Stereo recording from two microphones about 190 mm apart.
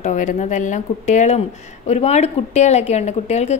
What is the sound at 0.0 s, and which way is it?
Speech, 40° left (ahead or behind).